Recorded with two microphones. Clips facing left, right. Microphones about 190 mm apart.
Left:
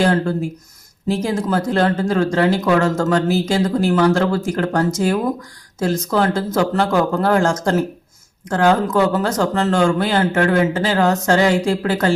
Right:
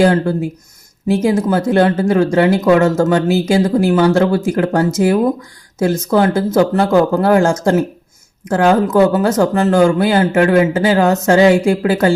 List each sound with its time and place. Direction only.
0.0 s speech: 25° right (ahead or behind)